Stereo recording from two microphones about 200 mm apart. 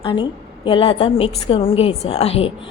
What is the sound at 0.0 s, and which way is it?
A woman's voice, 25° left (ahead or behind).